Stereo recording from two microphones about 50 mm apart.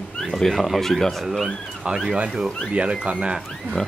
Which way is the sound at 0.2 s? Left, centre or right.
Centre.